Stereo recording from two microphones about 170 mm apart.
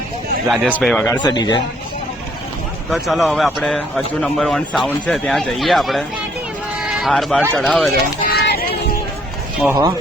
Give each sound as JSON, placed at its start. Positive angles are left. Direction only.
{"t": 0.4, "sound": "speech", "side_deg": 0}
{"t": 1.2, "sound": "a man's voice", "side_deg": 25}
{"t": 2.9, "sound": "speech", "side_deg": 0}
{"t": 8.2, "sound": "a sound", "side_deg": 70}
{"t": 9.6, "sound": "speech", "side_deg": -20}